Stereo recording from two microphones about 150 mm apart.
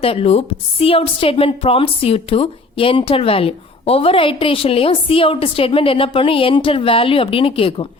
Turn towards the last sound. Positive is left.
turn(degrees=35)  # may be behind; listen again after turning